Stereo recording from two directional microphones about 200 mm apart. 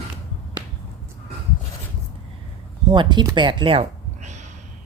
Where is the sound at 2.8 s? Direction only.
20° right (ahead or behind).